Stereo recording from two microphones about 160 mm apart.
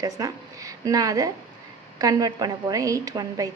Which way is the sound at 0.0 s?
20° right (ahead or behind).